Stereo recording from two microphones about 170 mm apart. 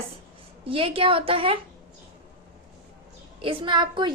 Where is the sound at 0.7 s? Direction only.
30° right (ahead or behind).